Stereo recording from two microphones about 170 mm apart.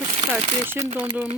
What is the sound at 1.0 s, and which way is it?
Speech, 10° right (ahead or behind).